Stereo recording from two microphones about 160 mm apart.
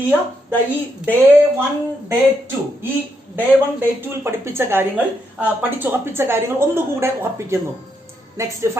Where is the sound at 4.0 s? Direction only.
15° right (ahead or behind).